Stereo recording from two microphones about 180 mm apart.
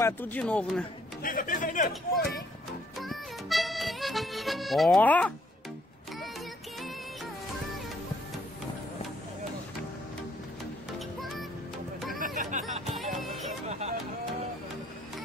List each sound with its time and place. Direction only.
0.0 s speech: 10° left (ahead or behind)
1.2 s speech: 50° left (ahead or behind)
3.0 s music: centre (ahead or behind)
11.0 s music: centre (ahead or behind)
12.4 s music: 45° right (ahead or behind)